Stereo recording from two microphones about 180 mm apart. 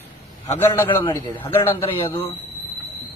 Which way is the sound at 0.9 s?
25° left (ahead or behind).